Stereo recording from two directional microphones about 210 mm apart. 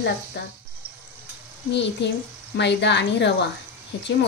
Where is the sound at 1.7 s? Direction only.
55° left (ahead or behind).